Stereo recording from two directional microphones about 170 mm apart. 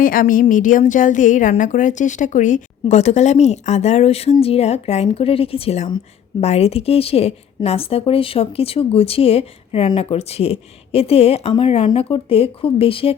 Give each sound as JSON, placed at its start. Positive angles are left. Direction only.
{"t": 0.0, "sound": "a woman's voice", "side_deg": 55}